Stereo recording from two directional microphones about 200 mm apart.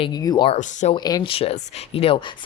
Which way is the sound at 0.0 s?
20° left (ahead or behind).